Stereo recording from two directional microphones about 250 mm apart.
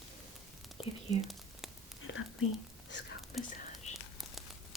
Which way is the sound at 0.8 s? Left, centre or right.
Left.